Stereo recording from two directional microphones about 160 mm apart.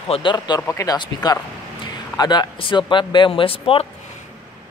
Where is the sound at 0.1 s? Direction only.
30° left (ahead or behind).